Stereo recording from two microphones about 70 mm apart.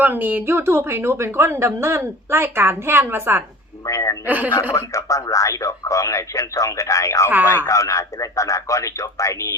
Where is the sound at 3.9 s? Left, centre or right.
Left.